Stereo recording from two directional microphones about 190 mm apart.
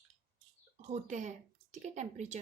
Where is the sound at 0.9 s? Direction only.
40° right (ahead or behind).